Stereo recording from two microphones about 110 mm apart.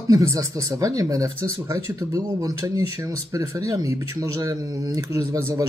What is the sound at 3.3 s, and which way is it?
Speech, 30° right (ahead or behind).